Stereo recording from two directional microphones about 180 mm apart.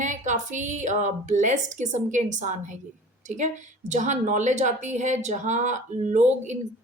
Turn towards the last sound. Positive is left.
turn(degrees=-40)  # may be behind; listen again after turning